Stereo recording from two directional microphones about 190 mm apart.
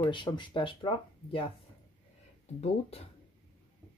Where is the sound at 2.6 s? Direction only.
30° left (ahead or behind).